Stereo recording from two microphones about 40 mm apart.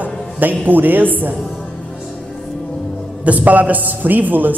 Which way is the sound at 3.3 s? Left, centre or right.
Right.